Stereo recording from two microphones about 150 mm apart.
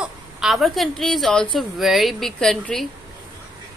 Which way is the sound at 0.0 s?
Centre (ahead or behind).